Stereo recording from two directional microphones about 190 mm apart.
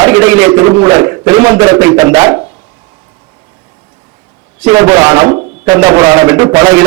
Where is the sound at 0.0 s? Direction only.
15° right (ahead or behind).